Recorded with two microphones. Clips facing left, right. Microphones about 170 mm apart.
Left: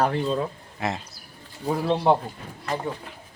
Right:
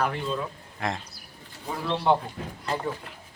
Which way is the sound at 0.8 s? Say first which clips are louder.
Left 2 dB; 5° left (ahead or behind).